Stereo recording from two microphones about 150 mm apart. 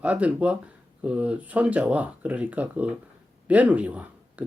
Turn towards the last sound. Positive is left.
turn(degrees=-10)  # may be behind; listen again after turning